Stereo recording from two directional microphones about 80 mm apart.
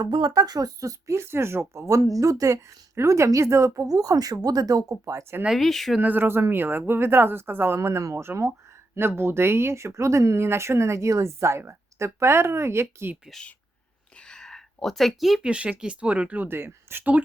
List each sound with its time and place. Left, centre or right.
0.2 s speech: right
1.9 s speech: right
5.5 s speech: centre
6.0 s speech: right
14.2 s a sound: centre
15.4 s speech: centre